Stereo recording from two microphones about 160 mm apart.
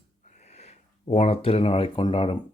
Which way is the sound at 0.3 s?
45° left (ahead or behind).